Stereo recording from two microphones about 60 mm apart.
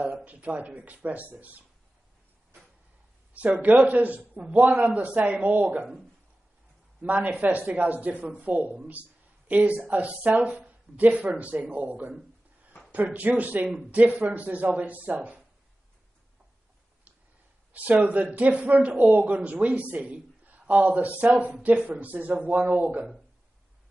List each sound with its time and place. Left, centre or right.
0.0 s a man's voice: right
3.3 s a man's voice: right
7.0 s a man's voice: right
12.9 s a man's voice: right
18.0 s a man's voice: right